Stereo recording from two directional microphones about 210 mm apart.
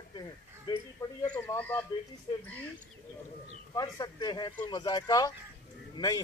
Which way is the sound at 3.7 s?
20° left (ahead or behind).